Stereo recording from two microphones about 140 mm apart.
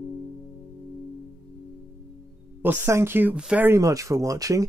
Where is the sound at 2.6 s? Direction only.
15° right (ahead or behind).